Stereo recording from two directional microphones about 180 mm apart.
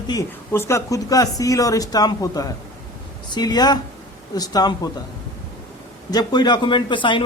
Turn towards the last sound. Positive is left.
turn(degrees=25)  # may be behind; listen again after turning